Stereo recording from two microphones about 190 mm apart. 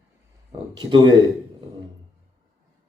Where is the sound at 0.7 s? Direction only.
25° right (ahead or behind).